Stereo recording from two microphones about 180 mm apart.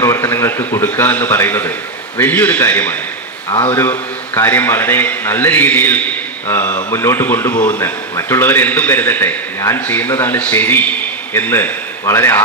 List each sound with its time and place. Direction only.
0.0 s a sound: 15° left (ahead or behind)
0.7 s a man's voice: 10° left (ahead or behind)
3.4 s a man's voice: 30° left (ahead or behind)
3.7 s a man's voice: 15° left (ahead or behind)